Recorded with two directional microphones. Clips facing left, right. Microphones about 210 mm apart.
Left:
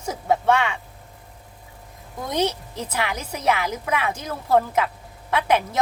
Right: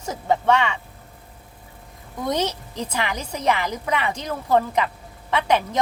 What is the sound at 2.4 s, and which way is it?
A woman's voice, 10° left (ahead or behind).